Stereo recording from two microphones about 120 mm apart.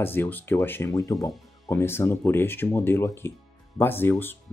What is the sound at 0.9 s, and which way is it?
Speech, 30° left (ahead or behind).